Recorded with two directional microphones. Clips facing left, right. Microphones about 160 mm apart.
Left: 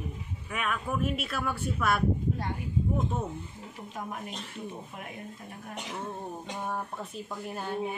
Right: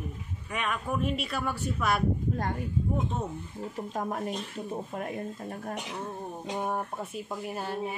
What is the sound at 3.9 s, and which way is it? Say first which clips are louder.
Speech: right 5 dB; 40° right (ahead or behind).